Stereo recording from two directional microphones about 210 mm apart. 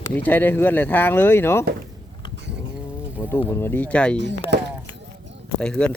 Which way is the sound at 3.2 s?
10° left (ahead or behind).